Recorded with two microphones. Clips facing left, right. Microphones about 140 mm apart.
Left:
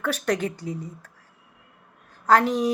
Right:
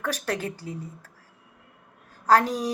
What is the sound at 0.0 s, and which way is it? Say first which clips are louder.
Speech: left 4 dB; 35° right (ahead or behind).